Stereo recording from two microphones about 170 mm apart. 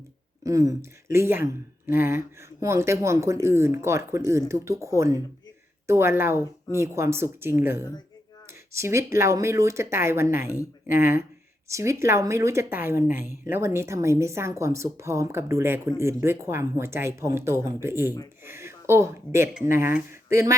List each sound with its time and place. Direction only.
0.4 s speech: 20° right (ahead or behind)